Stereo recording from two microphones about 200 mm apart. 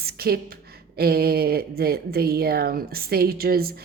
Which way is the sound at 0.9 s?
50° right (ahead or behind).